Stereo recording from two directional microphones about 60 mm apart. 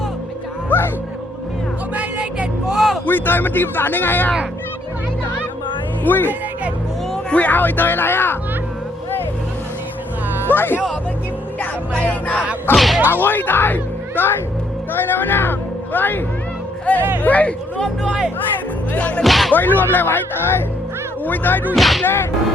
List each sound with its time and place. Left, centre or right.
2.0 s vehicle: centre
2.7 s a sound: centre
3.1 s a man's voice: left
6.1 s a man's voice: left
7.3 s a man's voice: left
10.4 s speech: left
11.6 s music: left
12.7 s whip: centre
13.1 s speech: left
18.9 s speech: left
19.2 s whip: centre
19.5 s a man's voice: left
21.8 s whip: centre
22.0 s whip: left